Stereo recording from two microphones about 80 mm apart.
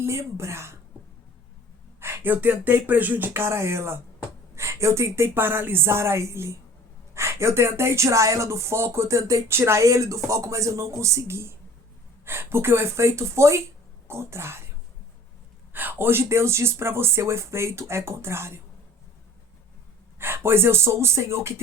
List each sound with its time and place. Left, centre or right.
0.0 s speech: right
2.0 s speech: right
15.7 s speech: right
20.1 s speech: right